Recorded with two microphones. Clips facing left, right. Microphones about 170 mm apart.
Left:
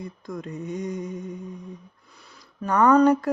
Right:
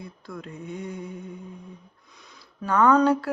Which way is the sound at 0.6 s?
40° left (ahead or behind).